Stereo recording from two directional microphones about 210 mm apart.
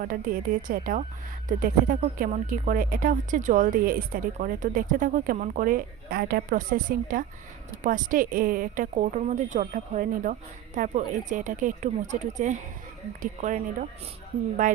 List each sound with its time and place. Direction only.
0.0 s speech: 40° right (ahead or behind)